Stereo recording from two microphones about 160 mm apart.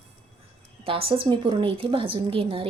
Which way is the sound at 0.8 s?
35° right (ahead or behind).